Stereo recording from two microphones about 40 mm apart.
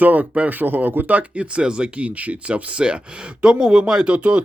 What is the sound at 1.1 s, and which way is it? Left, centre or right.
Speech, right.